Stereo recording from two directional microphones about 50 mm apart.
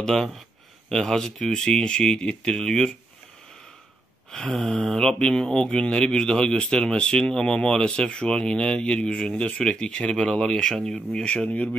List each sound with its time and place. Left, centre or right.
0.0 s speech: centre
4.3 s speech: centre
11.1 s speech: left